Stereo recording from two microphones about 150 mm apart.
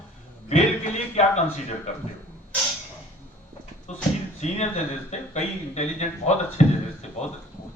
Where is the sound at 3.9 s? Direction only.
50° left (ahead or behind).